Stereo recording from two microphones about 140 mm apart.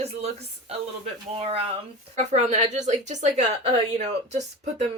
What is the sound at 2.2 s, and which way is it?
Speech, 55° right (ahead or behind).